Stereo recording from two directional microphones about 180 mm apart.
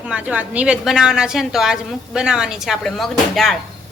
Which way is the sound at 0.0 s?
5° right (ahead or behind).